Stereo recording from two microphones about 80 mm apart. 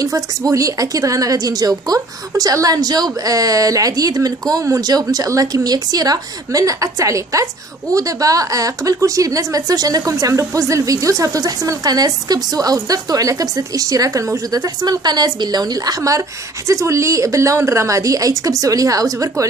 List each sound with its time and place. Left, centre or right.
0.0 s a woman's voice: right